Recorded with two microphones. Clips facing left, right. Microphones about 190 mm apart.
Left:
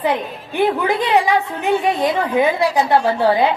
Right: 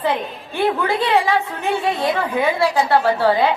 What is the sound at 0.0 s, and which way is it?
A woman's voice, 15° left (ahead or behind).